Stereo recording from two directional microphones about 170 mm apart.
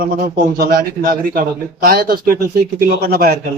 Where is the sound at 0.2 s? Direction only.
60° right (ahead or behind).